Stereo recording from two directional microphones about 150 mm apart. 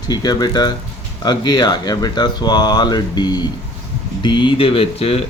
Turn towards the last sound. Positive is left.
turn(degrees=40)  # may be behind; listen again after turning